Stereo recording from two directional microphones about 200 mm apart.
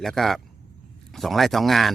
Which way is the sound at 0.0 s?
Centre (ahead or behind).